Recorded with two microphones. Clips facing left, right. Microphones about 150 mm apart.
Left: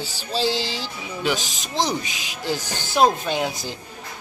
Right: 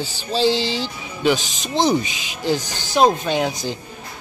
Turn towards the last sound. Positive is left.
turn(degrees=0)  # may be behind; listen again after turning